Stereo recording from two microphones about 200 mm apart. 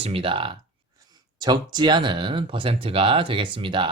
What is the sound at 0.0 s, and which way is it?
Speech, 25° right (ahead or behind).